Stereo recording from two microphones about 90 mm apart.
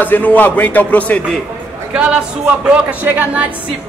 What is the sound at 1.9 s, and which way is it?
A woman's voice, 10° right (ahead or behind).